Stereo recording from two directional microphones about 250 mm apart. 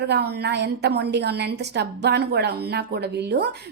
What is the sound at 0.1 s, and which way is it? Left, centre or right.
A woman's voice, right.